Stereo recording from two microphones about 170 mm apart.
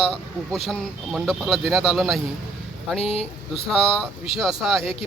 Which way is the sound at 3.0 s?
35° left (ahead or behind).